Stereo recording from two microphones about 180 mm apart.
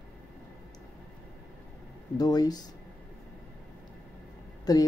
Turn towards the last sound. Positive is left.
turn(degrees=20)  # may be behind; listen again after turning